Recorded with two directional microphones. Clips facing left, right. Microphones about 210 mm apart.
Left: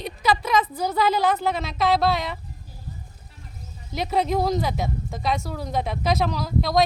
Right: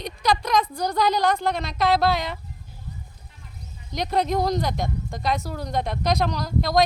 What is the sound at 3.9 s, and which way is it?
Speech, 5° left (ahead or behind).